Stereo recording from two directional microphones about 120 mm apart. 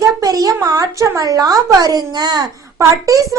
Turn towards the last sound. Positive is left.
turn(degrees=-30)  # may be behind; listen again after turning